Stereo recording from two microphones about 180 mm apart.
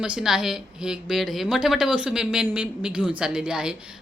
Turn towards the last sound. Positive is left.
turn(degrees=-5)  # may be behind; listen again after turning